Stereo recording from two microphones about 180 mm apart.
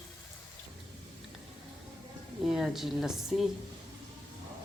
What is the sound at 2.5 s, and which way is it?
Speech, centre (ahead or behind).